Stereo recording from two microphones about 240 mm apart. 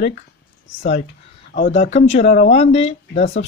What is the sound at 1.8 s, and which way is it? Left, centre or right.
Speech, left.